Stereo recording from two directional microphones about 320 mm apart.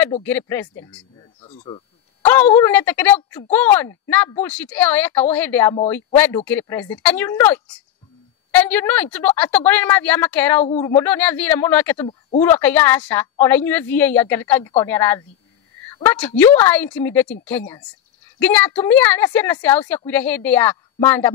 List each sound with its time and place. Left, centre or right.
0.2 s a woman's voice: centre
1.4 s speech: centre
2.2 s a woman's voice: centre